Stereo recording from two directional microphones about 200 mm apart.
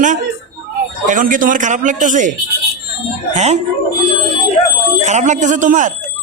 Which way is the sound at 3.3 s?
35° right (ahead or behind).